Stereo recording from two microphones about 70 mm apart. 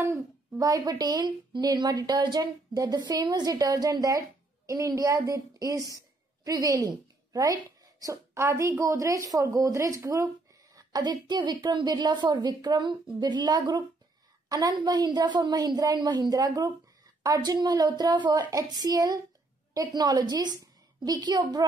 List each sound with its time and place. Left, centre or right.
0.6 s a woman's voice: right
4.6 s a woman's voice: right
14.5 s a woman's voice: right
15.1 s a woman's voice: right
17.4 s a woman's voice: right